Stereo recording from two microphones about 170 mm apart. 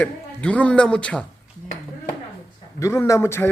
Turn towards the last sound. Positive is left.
turn(degrees=15)  # may be behind; listen again after turning